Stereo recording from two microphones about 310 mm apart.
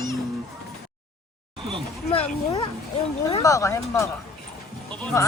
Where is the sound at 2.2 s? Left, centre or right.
Centre.